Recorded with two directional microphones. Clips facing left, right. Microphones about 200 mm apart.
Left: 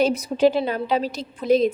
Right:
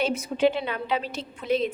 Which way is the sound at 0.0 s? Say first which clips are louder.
Left 5 dB; 35° left (ahead or behind).